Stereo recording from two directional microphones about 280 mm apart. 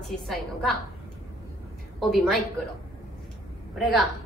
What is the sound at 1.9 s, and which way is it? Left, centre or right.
Speech, centre.